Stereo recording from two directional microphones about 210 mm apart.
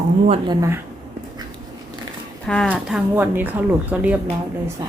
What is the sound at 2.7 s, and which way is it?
Speech, 5° right (ahead or behind).